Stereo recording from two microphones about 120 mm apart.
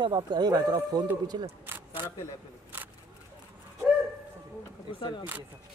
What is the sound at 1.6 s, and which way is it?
Single-lens reflex camera, 20° right (ahead or behind).